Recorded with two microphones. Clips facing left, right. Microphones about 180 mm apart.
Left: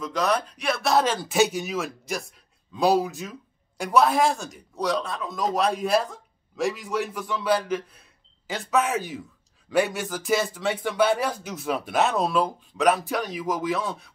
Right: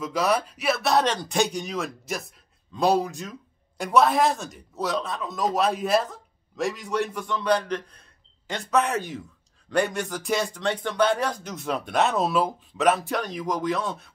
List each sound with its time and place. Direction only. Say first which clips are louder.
0.0 s speech: right 1 dB; 5° right (ahead or behind)